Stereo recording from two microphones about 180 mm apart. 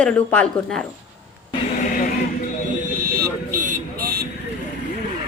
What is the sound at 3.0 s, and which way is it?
Vehicle, 55° right (ahead or behind).